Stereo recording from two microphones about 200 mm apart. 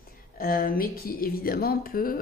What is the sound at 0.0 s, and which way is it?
Speech, 45° left (ahead or behind).